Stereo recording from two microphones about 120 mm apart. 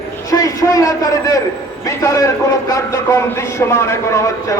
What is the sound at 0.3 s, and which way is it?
A man's voice, 30° left (ahead or behind).